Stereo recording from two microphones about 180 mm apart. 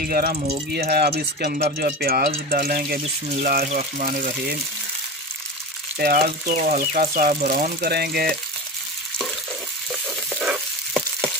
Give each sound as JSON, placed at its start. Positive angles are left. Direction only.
{"t": 0.0, "sound": "speech", "side_deg": -55}
{"t": 5.9, "sound": "speech", "side_deg": -55}
{"t": 9.8, "sound": "frying", "side_deg": -5}